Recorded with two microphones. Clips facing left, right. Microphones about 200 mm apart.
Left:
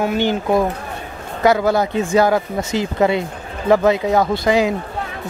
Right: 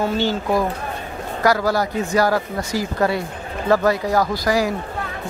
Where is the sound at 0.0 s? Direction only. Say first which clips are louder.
Left 2 dB; 15° left (ahead or behind).